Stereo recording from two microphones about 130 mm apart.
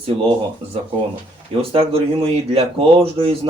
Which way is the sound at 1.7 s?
45° right (ahead or behind).